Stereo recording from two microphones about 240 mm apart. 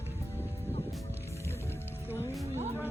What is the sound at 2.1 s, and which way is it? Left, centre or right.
Music, centre.